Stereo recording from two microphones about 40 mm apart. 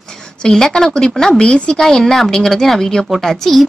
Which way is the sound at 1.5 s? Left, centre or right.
Left.